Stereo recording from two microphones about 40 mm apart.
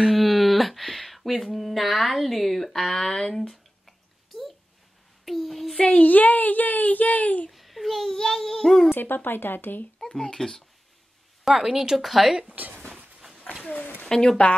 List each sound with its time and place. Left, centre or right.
0.0 s a sound: centre
2.8 s a child's voice: centre
3.3 s a sound: centre
5.2 s a child's voice: centre
5.8 s speech: left
7.5 s a child's voice: centre
8.9 s speech: left
10.0 s a child's voice: centre
11.4 s speech: centre
12.4 s speech: right
14.0 s a child's voice: centre